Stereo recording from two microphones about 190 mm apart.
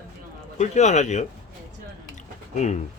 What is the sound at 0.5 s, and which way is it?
Speech, 35° left (ahead or behind).